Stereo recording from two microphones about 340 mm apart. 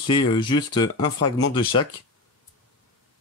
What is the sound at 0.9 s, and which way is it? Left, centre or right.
Speech, left.